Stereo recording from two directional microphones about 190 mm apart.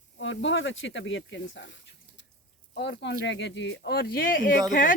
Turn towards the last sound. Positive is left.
turn(degrees=45)  # may be behind; listen again after turning